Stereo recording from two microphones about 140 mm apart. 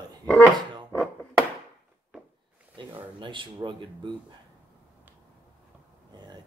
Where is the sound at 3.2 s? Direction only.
35° right (ahead or behind).